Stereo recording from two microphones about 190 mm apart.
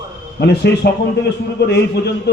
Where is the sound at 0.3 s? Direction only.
60° left (ahead or behind).